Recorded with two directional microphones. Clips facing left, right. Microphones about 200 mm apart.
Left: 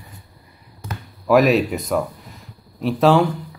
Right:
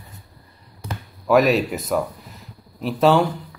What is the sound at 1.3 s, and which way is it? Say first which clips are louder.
Speech: left 2 dB; centre (ahead or behind).